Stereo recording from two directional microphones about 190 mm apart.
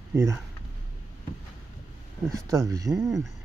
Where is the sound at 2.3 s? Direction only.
15° right (ahead or behind).